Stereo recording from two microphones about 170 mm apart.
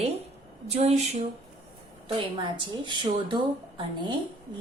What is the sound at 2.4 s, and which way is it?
Speech, 30° right (ahead or behind).